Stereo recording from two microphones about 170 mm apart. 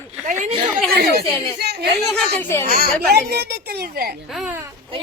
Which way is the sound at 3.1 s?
70° right (ahead or behind).